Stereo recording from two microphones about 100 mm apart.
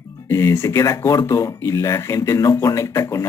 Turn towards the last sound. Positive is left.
turn(degrees=25)  # may be behind; listen again after turning